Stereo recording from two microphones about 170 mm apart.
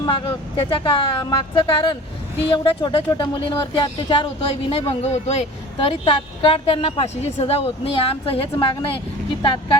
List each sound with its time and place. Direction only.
0.0 s speech: 30° left (ahead or behind)